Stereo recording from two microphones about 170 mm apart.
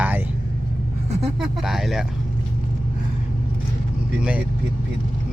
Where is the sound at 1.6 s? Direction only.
Centre (ahead or behind).